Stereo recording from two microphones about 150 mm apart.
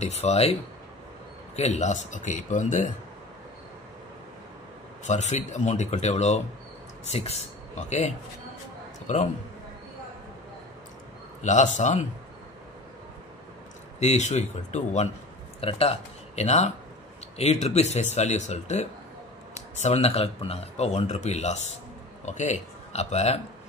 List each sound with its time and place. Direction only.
0.0 s speech: 45° left (ahead or behind)
1.6 s speech: 50° left (ahead or behind)
5.0 s a man's voice: 50° left (ahead or behind)
11.4 s speech: 55° left (ahead or behind)
13.9 s speech: 50° left (ahead or behind)